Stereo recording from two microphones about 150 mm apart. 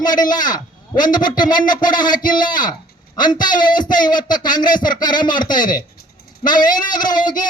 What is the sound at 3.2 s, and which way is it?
A man's voice, 30° left (ahead or behind).